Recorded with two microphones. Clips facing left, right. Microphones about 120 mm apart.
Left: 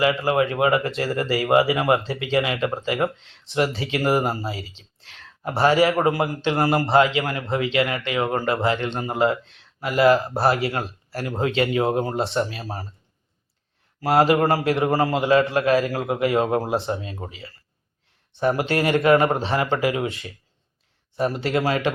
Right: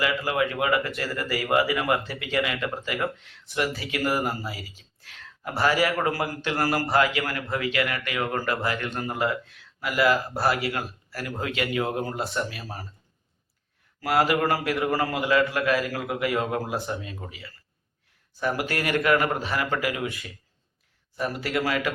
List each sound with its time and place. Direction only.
0.0 s speech: 30° left (ahead or behind)
14.0 s speech: 30° left (ahead or behind)